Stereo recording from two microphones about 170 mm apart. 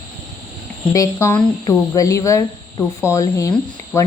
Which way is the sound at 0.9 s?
15° left (ahead or behind).